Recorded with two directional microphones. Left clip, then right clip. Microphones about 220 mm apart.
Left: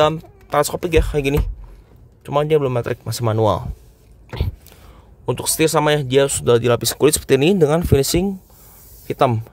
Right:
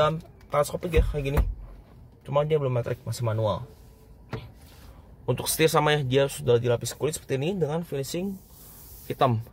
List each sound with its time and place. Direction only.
0.0 s speech: 50° left (ahead or behind)
5.2 s speech: 25° left (ahead or behind); by 8.3 s 45° left (ahead or behind)
9.0 s speech: 35° left (ahead or behind)